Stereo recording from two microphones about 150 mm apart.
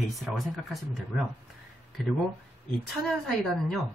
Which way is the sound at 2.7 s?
Centre (ahead or behind).